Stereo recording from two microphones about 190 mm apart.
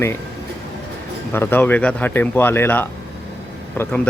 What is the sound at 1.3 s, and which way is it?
Speech, 10° left (ahead or behind).